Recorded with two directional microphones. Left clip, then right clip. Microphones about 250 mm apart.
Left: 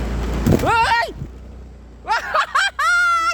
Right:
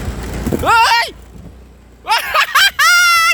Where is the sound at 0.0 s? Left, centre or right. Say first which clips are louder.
Right 1 dB; right.